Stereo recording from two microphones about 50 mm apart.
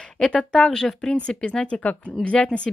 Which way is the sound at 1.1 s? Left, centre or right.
Left.